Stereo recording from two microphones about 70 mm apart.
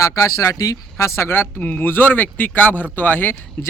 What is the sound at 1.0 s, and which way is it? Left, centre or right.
Speech, left.